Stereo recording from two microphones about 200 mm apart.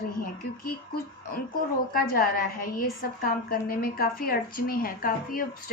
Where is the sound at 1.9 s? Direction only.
45° left (ahead or behind).